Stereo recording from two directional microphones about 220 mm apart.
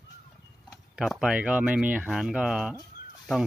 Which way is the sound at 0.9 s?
Centre (ahead or behind).